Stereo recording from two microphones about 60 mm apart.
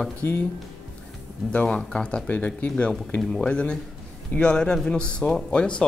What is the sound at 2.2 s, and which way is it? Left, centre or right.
Speech, left.